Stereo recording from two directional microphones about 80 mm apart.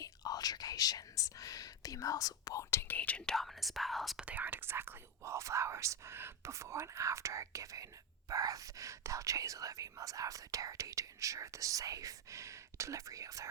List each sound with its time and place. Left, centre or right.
0.0 s whispering: left
2.6 s speech: left; by 4.3 s centre
4.3 s speech: right